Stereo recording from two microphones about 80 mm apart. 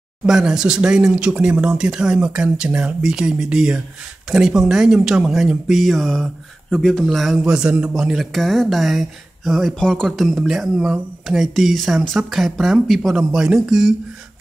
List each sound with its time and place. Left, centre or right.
0.3 s speech: centre
7.4 s speech: centre